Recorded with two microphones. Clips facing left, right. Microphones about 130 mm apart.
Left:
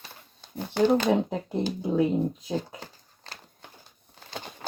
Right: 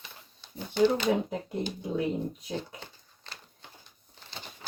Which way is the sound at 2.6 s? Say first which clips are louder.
Left 4 dB; 40° left (ahead or behind).